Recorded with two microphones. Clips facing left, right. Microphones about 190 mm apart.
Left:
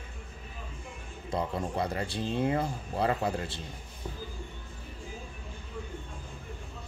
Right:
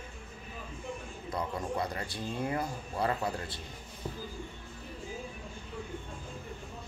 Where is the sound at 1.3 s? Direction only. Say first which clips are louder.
Left 3 dB; 25° left (ahead or behind).